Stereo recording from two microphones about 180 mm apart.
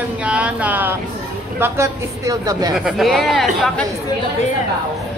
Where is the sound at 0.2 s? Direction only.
5° right (ahead or behind).